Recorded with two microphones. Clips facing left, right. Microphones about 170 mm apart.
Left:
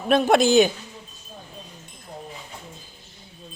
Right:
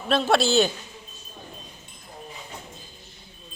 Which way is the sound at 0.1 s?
15° left (ahead or behind).